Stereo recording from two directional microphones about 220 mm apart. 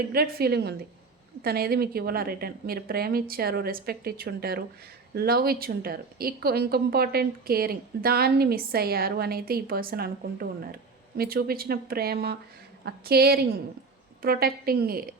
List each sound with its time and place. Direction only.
0.1 s speech: 45° right (ahead or behind)